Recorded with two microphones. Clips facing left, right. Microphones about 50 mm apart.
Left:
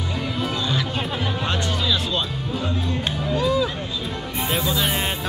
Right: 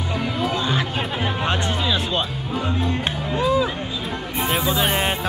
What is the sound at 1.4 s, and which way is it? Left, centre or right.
Music, right.